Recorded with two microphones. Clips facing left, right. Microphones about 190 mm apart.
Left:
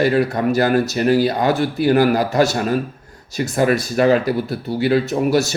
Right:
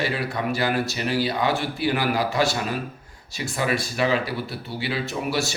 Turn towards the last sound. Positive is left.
turn(degrees=45)  # may be behind; listen again after turning